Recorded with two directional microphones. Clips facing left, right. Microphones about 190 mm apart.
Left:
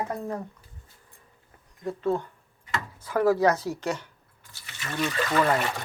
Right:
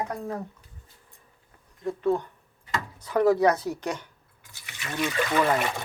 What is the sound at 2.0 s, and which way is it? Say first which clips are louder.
Speech: right 2 dB; 15° right (ahead or behind).